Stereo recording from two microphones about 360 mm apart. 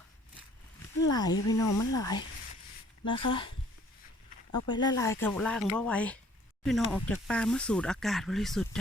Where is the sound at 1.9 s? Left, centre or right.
Centre.